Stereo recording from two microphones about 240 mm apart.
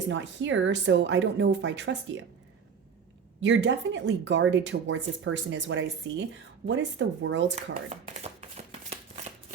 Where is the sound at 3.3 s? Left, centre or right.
Right.